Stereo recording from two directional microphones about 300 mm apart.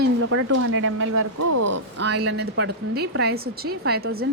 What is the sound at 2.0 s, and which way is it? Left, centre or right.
A woman's voice, right.